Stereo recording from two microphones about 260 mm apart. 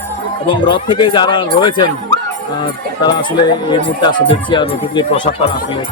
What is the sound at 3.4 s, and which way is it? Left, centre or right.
Speech, centre.